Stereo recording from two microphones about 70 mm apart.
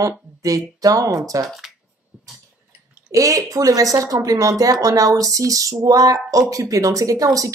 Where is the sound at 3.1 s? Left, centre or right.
Right.